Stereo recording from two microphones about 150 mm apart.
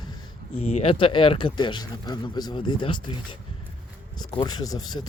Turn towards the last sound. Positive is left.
turn(degrees=25)  # may be behind; listen again after turning